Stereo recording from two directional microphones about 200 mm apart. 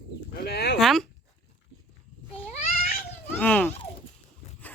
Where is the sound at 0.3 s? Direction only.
55° left (ahead or behind).